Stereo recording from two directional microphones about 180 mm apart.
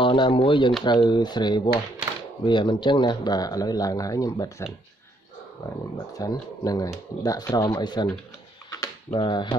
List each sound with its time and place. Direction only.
0.0 s speech: 30° left (ahead or behind)
6.1 s speech: 20° left (ahead or behind)
8.6 s a sound: 20° left (ahead or behind)